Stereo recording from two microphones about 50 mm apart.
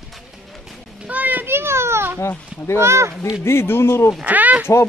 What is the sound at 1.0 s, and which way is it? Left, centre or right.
Children playing, right.